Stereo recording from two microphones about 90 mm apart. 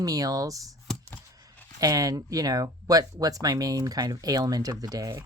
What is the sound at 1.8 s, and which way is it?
Speech, 40° right (ahead or behind).